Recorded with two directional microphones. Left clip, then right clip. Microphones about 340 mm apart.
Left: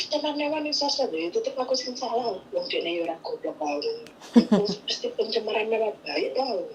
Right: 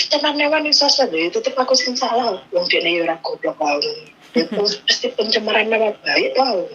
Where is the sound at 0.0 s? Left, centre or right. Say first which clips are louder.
Right 10 dB; right.